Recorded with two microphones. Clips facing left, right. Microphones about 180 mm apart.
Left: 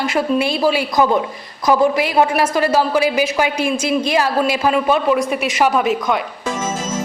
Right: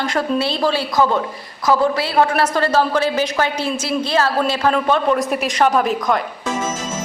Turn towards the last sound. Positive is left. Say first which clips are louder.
# even
turn(degrees=0)  # may be behind; listen again after turning